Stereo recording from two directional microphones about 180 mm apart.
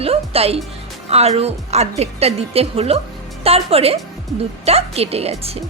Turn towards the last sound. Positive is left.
turn(degrees=-35)  # may be behind; listen again after turning